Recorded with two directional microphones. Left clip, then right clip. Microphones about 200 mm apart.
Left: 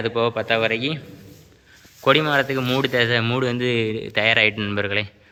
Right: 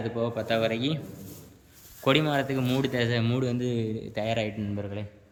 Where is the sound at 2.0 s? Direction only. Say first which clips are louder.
Left 7 dB; 5° right (ahead or behind).